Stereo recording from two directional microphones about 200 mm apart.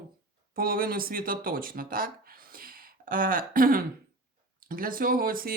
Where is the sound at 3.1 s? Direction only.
45° right (ahead or behind).